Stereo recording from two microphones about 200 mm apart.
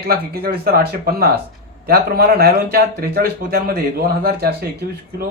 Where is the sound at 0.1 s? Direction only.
50° right (ahead or behind).